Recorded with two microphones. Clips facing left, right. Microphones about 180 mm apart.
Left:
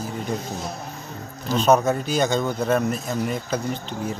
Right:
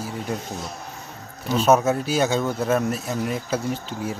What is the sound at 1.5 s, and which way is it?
Speech, 5° right (ahead or behind).